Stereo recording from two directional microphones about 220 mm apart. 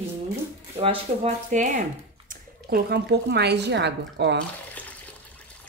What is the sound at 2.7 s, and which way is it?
Speech, 50° right (ahead or behind).